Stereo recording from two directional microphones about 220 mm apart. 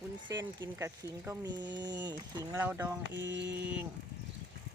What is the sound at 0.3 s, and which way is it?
Speech, 15° right (ahead or behind).